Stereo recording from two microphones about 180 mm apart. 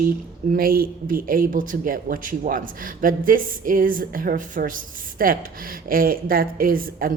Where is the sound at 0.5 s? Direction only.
55° right (ahead or behind).